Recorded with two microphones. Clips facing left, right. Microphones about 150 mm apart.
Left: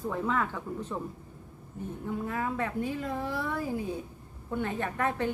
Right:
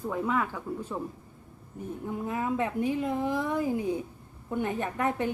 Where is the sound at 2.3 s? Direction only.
20° right (ahead or behind).